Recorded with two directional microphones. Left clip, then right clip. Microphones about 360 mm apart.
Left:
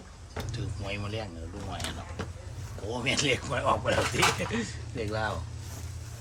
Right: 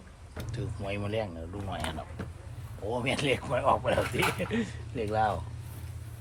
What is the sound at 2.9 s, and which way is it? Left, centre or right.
Speech, centre.